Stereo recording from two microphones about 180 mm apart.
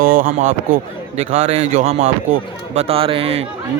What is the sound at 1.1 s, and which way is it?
A man's voice, 35° right (ahead or behind).